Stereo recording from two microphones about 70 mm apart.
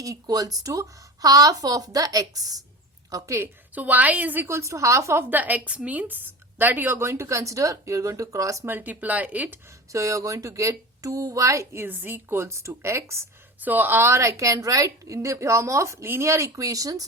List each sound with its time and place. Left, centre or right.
0.0 s a woman's voice: right
3.8 s speech: right
4.4 s a woman's voice: right
5.3 s a woman's voice: right
8.6 s speech: right
9.9 s a woman's voice: right
11.9 s speech: right
12.4 s a woman's voice: right
13.7 s a woman's voice: right